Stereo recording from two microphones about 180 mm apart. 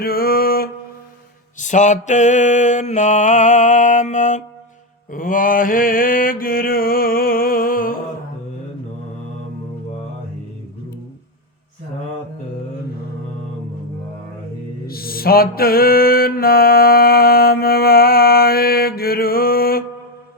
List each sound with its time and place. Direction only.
0.0 s a sound: 55° left (ahead or behind)
1.5 s mantra: 45° left (ahead or behind)
14.8 s music: 55° left (ahead or behind)